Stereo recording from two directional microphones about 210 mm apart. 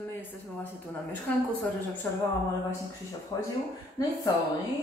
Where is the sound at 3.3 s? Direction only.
20° left (ahead or behind).